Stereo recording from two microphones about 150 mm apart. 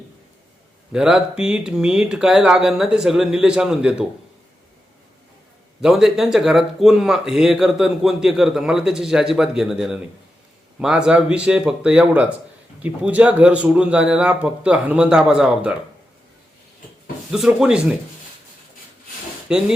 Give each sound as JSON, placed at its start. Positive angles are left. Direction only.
{"t": 0.9, "sound": "speech", "side_deg": -5}
{"t": 5.8, "sound": "a man's voice", "side_deg": -5}
{"t": 17.3, "sound": "speech", "side_deg": -5}
{"t": 19.5, "sound": "speech", "side_deg": -5}